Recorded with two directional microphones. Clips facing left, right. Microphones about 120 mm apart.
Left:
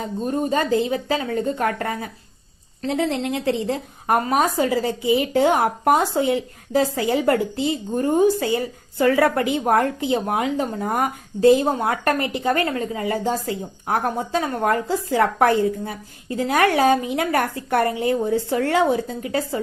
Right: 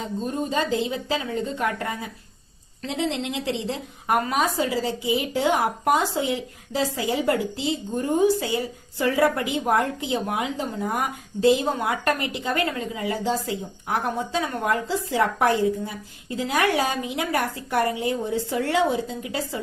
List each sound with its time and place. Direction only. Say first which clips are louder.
0.5 s a woman's voice: left 4 dB; 50° left (ahead or behind)